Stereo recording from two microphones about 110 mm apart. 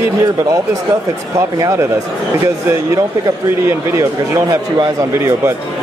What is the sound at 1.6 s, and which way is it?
Speech, 30° right (ahead or behind).